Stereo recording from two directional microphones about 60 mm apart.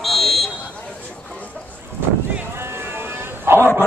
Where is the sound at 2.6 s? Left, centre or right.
Right.